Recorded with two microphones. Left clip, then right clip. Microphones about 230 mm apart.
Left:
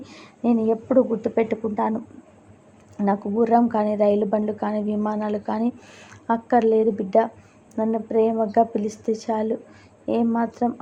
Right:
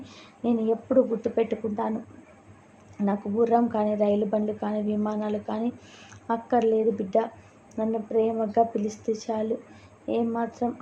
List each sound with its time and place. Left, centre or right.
0.0 s a woman's voice: centre
3.0 s a woman's voice: centre